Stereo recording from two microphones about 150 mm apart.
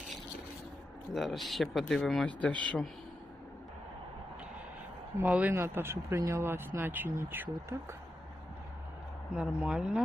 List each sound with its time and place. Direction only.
1.1 s speech: centre (ahead or behind)
5.2 s speech: 10° right (ahead or behind)
9.3 s speech: 5° right (ahead or behind)